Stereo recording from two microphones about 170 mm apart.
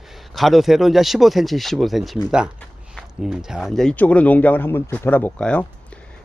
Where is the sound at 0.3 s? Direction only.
Centre (ahead or behind).